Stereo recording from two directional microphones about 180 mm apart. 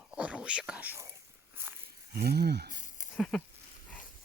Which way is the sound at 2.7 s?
45° left (ahead or behind).